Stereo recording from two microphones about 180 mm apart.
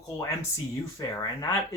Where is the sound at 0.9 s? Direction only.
20° left (ahead or behind).